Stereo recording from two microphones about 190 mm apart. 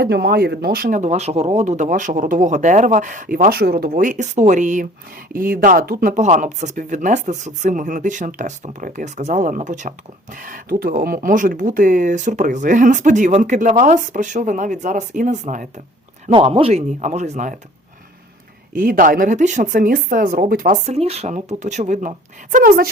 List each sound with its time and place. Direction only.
0.0 s speech: 60° right (ahead or behind); by 15.6 s 40° right (ahead or behind)
16.3 s speech: 30° right (ahead or behind)
18.7 s speech: 45° right (ahead or behind)
20.8 s speech: 35° right (ahead or behind); by 22.9 s 50° right (ahead or behind)